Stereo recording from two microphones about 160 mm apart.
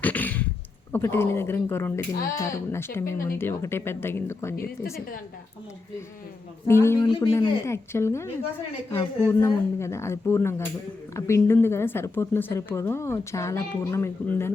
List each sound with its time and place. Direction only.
0.0 s a sound: 10° left (ahead or behind)
0.9 s a woman's voice: 15° left (ahead or behind)
6.7 s a woman's voice: 15° left (ahead or behind)
7.1 s speech: 25° left (ahead or behind)
7.7 s a woman's voice: 15° left (ahead or behind)